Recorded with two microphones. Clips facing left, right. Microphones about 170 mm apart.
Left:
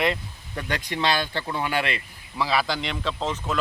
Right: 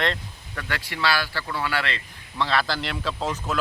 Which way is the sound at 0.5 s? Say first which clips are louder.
Left 3 dB; 20° left (ahead or behind).